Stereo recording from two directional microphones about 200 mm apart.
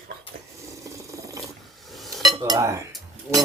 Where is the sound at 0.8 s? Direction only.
15° right (ahead or behind).